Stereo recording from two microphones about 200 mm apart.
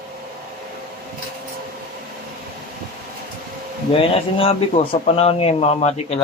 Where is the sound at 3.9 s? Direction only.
30° left (ahead or behind).